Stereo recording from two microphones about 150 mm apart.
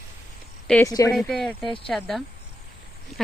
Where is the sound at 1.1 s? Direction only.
Centre (ahead or behind).